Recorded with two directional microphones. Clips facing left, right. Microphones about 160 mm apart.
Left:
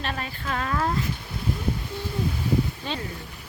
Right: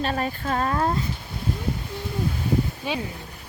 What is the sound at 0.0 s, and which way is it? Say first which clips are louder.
Speech: right 6 dB; 40° right (ahead or behind).